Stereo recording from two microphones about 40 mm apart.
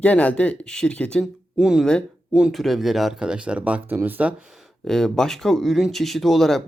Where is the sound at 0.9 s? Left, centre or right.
Left.